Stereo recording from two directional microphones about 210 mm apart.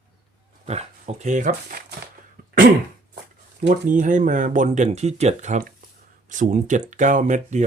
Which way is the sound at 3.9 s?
40° right (ahead or behind).